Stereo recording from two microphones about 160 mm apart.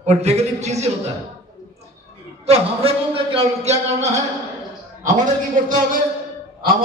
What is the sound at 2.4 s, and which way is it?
A man's voice, 40° right (ahead or behind).